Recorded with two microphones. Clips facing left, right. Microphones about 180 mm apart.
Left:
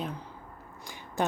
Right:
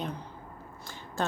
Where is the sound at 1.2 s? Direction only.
20° left (ahead or behind).